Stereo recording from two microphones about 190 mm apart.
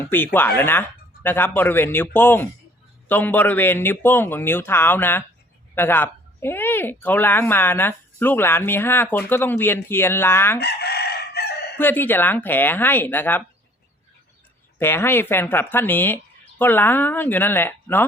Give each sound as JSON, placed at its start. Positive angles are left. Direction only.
{"t": 0.0, "sound": "speech", "side_deg": 10}
{"t": 10.6, "sound": "chicken", "side_deg": 60}
{"t": 11.8, "sound": "speech", "side_deg": 10}
{"t": 14.8, "sound": "speech", "side_deg": 10}